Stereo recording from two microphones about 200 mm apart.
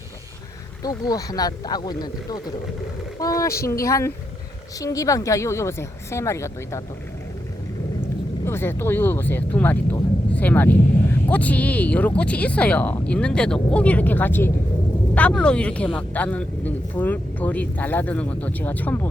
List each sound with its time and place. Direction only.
0.8 s speech: 20° left (ahead or behind)
8.4 s speech: 10° left (ahead or behind)